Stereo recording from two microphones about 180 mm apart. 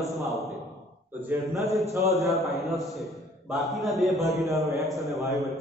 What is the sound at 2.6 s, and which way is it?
A man's voice, centre (ahead or behind).